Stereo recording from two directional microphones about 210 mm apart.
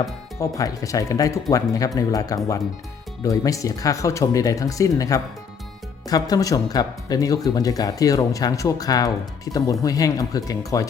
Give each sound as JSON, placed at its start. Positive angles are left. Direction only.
{"t": 0.0, "sound": "speech", "side_deg": 15}